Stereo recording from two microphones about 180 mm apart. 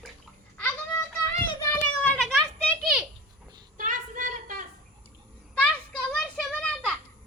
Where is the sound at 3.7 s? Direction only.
45° right (ahead or behind).